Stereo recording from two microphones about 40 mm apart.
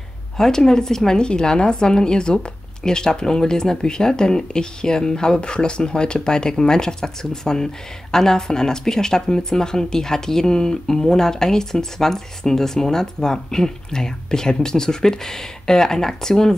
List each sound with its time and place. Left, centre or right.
0.4 s a woman's voice: centre